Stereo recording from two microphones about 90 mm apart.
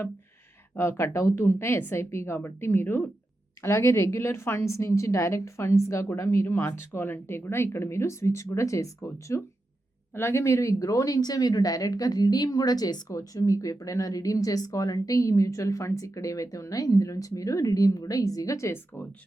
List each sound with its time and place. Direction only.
0.8 s a woman's voice: 30° left (ahead or behind)